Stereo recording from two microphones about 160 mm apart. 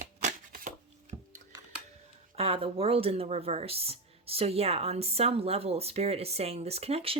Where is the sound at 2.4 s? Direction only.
35° right (ahead or behind).